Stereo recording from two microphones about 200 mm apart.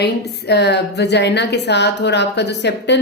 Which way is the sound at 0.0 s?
55° left (ahead or behind).